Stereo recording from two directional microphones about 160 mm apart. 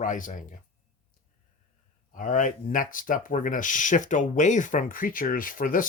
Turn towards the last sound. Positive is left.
turn(degrees=60)  # may be behind; listen again after turning